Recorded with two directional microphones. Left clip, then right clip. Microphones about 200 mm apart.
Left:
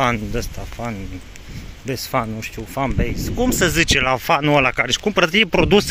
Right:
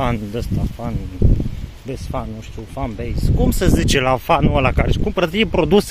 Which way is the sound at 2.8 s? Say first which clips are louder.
Left 4 dB; 5° left (ahead or behind).